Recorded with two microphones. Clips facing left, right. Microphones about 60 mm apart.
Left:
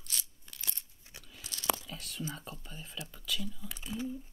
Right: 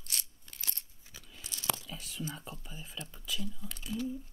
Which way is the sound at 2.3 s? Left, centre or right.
Centre.